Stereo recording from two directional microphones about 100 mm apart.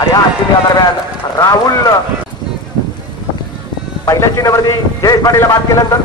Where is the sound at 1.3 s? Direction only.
40° left (ahead or behind).